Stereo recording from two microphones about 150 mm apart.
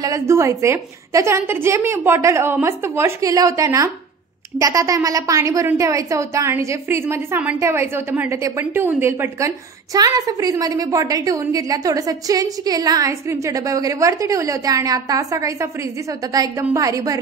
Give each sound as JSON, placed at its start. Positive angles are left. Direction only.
{"t": 0.0, "sound": "a woman's voice", "side_deg": -20}
{"t": 16.7, "sound": "a woman's voice", "side_deg": -20}